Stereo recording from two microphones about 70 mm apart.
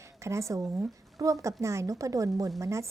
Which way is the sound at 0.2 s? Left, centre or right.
Right.